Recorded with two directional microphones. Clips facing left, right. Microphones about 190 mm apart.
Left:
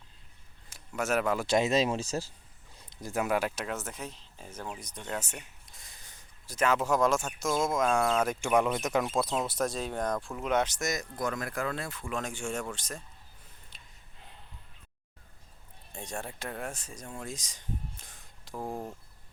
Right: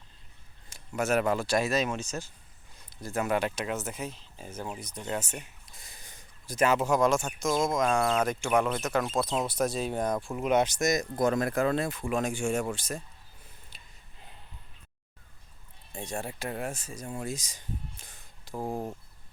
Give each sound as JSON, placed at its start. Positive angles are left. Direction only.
{"t": 0.7, "sound": "speech", "side_deg": 0}
{"t": 1.5, "sound": "speech", "side_deg": 20}
{"t": 2.9, "sound": "speech", "side_deg": 15}
{"t": 6.1, "sound": "a sound", "side_deg": -15}
{"t": 6.7, "sound": "speech", "side_deg": 0}
{"t": 9.5, "sound": "speech", "side_deg": 0}
{"t": 13.7, "sound": "a sound", "side_deg": -5}
{"t": 15.9, "sound": "speech", "side_deg": -5}
{"t": 18.5, "sound": "speech", "side_deg": -15}